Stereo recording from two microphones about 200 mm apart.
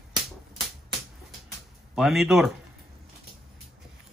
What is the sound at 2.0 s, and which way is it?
Speech, centre (ahead or behind).